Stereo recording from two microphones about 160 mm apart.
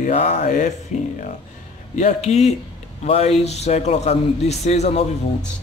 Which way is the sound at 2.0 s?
45° left (ahead or behind).